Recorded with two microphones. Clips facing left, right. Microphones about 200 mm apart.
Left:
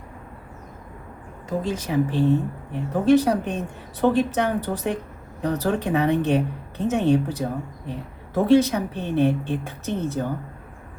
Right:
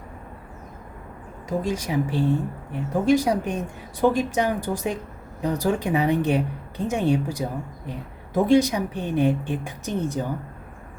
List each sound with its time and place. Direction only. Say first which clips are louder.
1.5 s a woman's voice: even; 10° right (ahead or behind)